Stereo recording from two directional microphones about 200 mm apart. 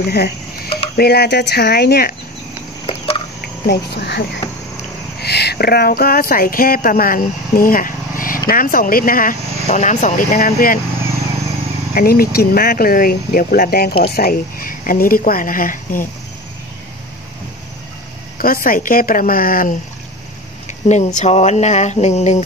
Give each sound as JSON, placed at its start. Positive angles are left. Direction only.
{"t": 0.0, "sound": "speech", "side_deg": 50}
{"t": 3.6, "sound": "speech", "side_deg": 55}
{"t": 11.9, "sound": "speech", "side_deg": 50}
{"t": 18.4, "sound": "speech", "side_deg": 45}
{"t": 20.6, "sound": "speech", "side_deg": 35}